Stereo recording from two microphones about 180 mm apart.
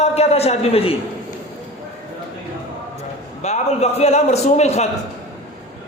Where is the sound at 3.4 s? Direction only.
35° left (ahead or behind).